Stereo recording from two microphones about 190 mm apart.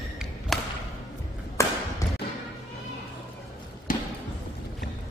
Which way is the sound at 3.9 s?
45° left (ahead or behind).